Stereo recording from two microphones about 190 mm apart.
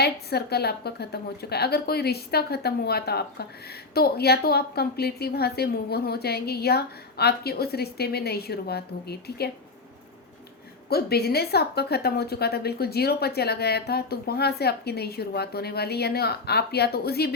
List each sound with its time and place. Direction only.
0.0 s a woman's voice: 60° left (ahead or behind)
10.8 s a woman's voice: 55° left (ahead or behind)